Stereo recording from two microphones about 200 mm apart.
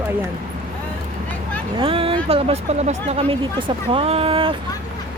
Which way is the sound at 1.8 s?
30° right (ahead or behind).